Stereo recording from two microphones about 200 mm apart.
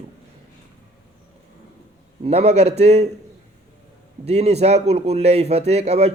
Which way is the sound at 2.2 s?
30° right (ahead or behind).